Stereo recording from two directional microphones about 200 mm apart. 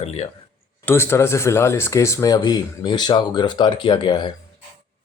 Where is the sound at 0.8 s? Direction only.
10° left (ahead or behind).